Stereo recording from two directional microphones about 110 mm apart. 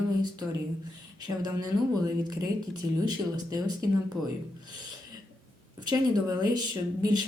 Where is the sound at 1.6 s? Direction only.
35° right (ahead or behind).